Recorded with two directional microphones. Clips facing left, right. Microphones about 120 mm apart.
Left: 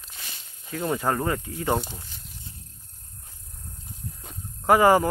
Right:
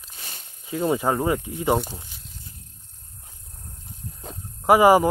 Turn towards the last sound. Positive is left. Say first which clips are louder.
# right 3 dB
turn(degrees=-15)  # may be behind; listen again after turning